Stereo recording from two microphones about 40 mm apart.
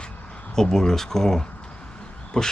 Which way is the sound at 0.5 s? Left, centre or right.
Centre.